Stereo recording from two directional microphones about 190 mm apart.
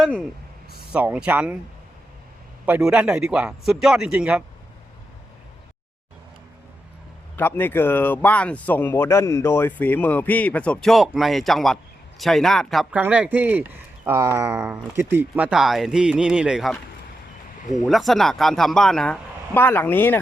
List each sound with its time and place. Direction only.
0.0 s speech: 5° left (ahead or behind)
0.9 s speech: 5° right (ahead or behind)
2.6 s speech: 10° right (ahead or behind)
7.3 s speech: 10° left (ahead or behind)
17.6 s speech: 40° left (ahead or behind)
17.8 s speech: centre (ahead or behind)